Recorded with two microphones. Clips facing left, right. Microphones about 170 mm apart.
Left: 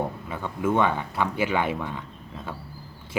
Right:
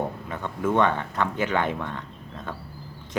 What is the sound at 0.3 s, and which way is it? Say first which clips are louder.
Speech: left 1 dB; 10° left (ahead or behind).